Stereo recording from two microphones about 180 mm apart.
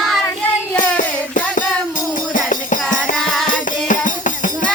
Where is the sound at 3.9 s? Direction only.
45° left (ahead or behind).